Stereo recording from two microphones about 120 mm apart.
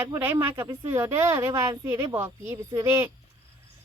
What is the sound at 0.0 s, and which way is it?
A child's voice, 15° right (ahead or behind).